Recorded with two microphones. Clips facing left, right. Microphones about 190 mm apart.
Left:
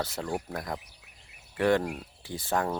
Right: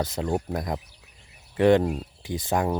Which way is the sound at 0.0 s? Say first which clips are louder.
Right 6 dB; 20° right (ahead or behind).